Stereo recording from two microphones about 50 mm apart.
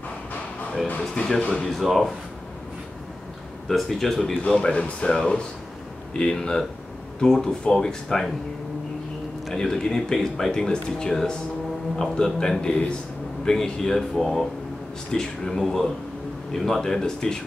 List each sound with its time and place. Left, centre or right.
0.9 s speech: centre
1.5 s speech: centre
3.6 s speech: centre
4.2 s speech: centre
9.5 s speech: centre